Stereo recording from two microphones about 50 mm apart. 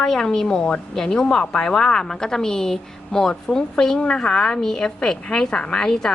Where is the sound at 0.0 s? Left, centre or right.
Centre.